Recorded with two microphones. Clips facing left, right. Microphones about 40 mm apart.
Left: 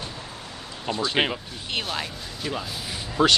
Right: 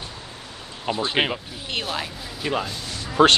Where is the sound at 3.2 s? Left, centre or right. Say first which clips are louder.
Right 4 dB; right.